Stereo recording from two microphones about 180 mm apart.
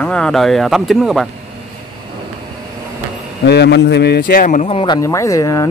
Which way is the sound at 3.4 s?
70° left (ahead or behind).